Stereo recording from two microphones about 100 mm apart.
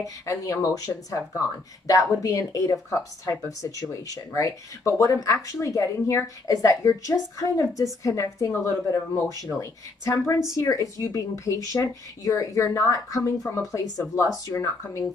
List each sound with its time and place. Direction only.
0.0 s speech: 35° left (ahead or behind)